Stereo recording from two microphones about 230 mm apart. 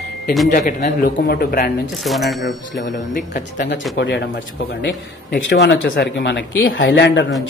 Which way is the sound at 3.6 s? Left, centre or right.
Left.